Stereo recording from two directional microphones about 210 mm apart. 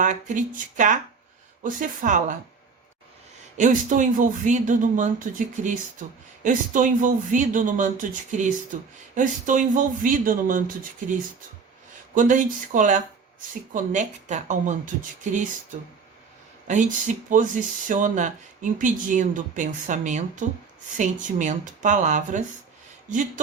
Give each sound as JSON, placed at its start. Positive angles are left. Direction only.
{"t": 0.0, "sound": "speech", "side_deg": -35}
{"t": 3.6, "sound": "speech", "side_deg": -35}
{"t": 12.1, "sound": "speech", "side_deg": -40}
{"t": 17.2, "sound": "speech", "side_deg": -40}